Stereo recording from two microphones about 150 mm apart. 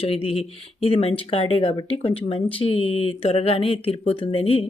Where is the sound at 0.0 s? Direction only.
40° left (ahead or behind).